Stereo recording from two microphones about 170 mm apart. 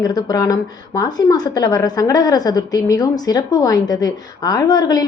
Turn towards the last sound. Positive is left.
turn(degrees=25)  # may be behind; listen again after turning